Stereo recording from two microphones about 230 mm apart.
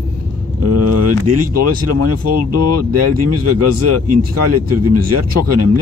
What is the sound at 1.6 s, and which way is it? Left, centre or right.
Speech, right.